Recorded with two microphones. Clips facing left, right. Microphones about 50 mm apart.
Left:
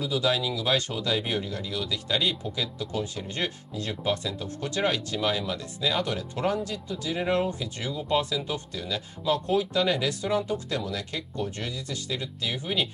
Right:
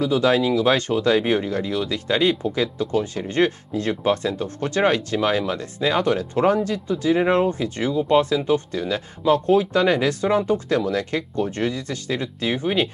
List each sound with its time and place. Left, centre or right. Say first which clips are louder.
0.0 s speech: right 8 dB; right